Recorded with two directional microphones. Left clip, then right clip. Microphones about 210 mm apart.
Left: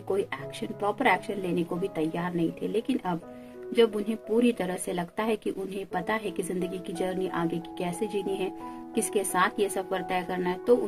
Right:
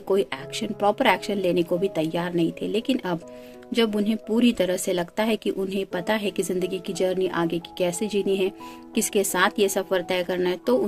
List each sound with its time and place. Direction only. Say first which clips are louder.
0.8 s speech: right 5 dB; 45° right (ahead or behind)